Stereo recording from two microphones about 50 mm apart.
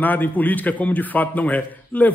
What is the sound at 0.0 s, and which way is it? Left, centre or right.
A man's voice, left.